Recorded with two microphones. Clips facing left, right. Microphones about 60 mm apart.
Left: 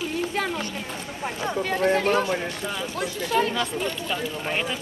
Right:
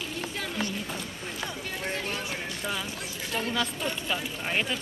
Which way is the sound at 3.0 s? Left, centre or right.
Left.